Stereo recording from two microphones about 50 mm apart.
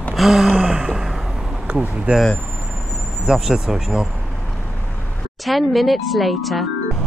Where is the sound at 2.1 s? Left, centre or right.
Right.